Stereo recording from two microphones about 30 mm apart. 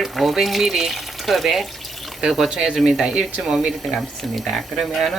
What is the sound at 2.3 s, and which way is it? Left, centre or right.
Speech, centre.